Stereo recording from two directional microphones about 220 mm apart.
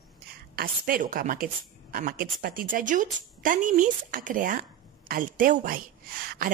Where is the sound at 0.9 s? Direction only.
40° right (ahead or behind).